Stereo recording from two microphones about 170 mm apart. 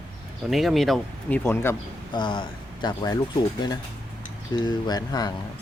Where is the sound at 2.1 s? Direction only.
25° left (ahead or behind).